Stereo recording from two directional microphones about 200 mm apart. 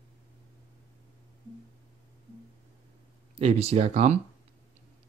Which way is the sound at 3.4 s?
30° right (ahead or behind).